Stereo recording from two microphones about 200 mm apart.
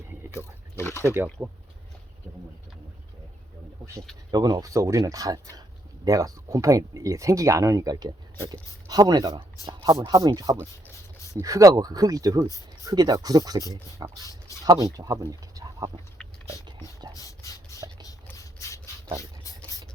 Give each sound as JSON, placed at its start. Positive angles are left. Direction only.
{"t": 0.3, "sound": "wild animals", "side_deg": 15}
{"t": 1.0, "sound": "speech", "side_deg": -10}
{"t": 4.3, "sound": "speech", "side_deg": -20}
{"t": 14.2, "sound": "speech", "side_deg": 15}
{"t": 14.6, "sound": "speech", "side_deg": -15}
{"t": 17.2, "sound": "a sound", "side_deg": 15}
{"t": 18.0, "sound": "rub", "side_deg": 15}